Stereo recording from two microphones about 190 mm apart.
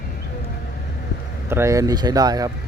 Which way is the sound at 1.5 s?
15° right (ahead or behind).